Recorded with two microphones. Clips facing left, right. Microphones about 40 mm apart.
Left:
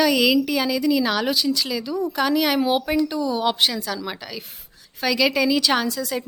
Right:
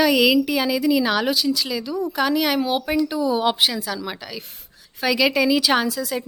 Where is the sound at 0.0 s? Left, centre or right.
Centre.